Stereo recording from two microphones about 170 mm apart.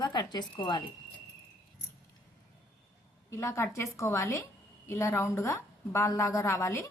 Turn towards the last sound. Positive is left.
turn(degrees=15)  # may be behind; listen again after turning